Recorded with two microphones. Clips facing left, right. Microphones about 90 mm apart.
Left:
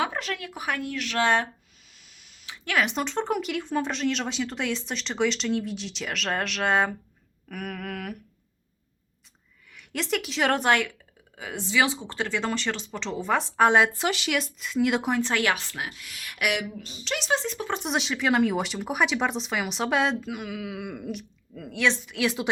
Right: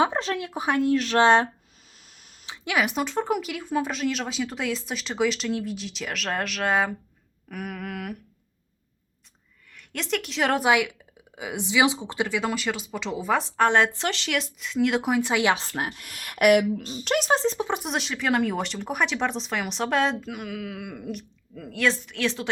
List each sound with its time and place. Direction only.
0.0 s speech: 30° right (ahead or behind)
2.0 s tick: 40° right (ahead or behind)
2.6 s speech: 10° right (ahead or behind)
9.7 s speech: 5° left (ahead or behind)
13.6 s speech: 10° left (ahead or behind)
15.2 s speech: 15° right (ahead or behind)
15.5 s speech: 40° right (ahead or behind)
15.9 s speech: 50° right (ahead or behind)
17.6 s speech: 15° right (ahead or behind)
17.8 s speech: centre (ahead or behind)